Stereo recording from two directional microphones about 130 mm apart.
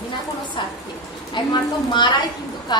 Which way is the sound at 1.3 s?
35° left (ahead or behind).